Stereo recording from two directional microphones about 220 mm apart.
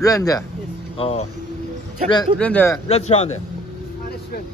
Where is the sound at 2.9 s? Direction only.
30° left (ahead or behind).